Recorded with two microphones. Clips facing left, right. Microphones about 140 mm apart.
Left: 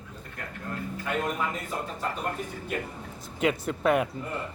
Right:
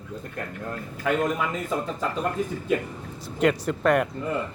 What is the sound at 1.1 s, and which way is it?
Speech, 90° right.